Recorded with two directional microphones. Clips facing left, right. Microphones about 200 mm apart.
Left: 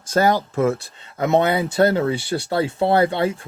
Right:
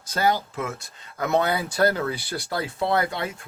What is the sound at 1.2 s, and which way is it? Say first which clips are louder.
Speech: left 5 dB; 25° left (ahead or behind).